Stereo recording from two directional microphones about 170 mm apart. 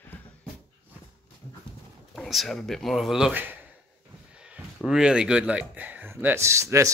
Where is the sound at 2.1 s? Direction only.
Centre (ahead or behind).